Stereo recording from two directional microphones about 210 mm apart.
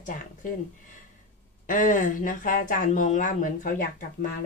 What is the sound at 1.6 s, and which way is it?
A woman's voice, 40° left (ahead or behind).